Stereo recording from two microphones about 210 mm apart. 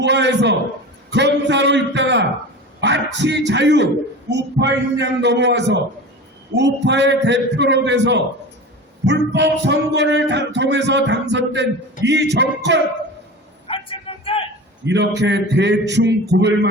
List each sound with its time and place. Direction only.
0.0 s music: 55° right (ahead or behind)
13.7 s vehicle: 25° left (ahead or behind)
14.8 s music: 55° right (ahead or behind)